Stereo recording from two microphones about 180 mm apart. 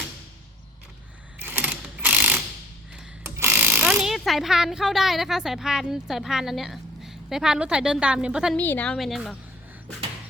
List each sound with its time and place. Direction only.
1.4 s mechanisms: 10° right (ahead or behind)
2.9 s speech: 15° right (ahead or behind)
8.5 s a woman's voice: 10° left (ahead or behind)